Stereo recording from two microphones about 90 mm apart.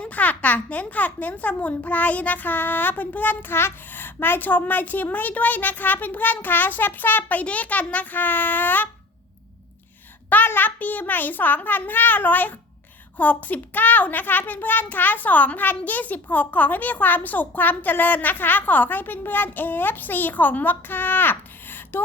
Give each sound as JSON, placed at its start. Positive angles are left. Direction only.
{"t": 0.0, "sound": "a child's voice", "side_deg": 15}
{"t": 10.2, "sound": "a child's voice", "side_deg": 20}